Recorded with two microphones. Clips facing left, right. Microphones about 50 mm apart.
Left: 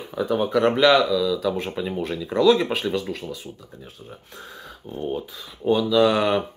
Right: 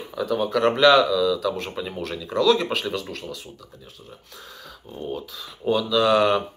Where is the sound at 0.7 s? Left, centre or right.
Centre.